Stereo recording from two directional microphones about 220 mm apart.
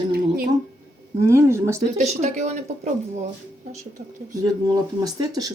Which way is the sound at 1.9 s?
30° right (ahead or behind).